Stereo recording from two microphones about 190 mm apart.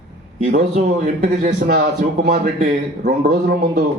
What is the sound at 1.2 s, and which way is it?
Speech, 40° right (ahead or behind).